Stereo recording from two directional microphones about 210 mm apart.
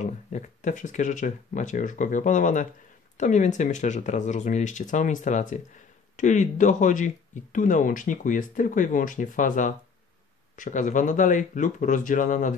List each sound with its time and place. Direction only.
0.0 s speech: 35° left (ahead or behind)